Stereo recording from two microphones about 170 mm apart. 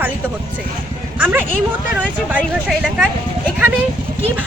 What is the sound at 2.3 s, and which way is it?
Speech, 5° right (ahead or behind).